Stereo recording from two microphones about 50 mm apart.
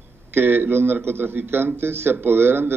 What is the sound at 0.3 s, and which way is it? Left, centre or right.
A man's voice, right.